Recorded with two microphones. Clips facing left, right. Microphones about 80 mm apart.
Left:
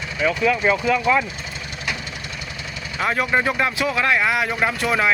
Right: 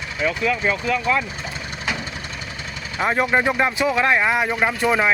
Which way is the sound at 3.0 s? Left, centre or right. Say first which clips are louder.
Right 1 dB; right.